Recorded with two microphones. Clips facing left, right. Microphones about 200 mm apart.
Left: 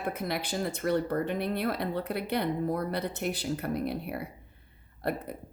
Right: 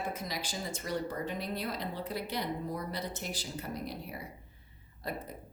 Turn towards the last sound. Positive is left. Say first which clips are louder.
# left 7 dB
turn(degrees=60)  # may be behind; listen again after turning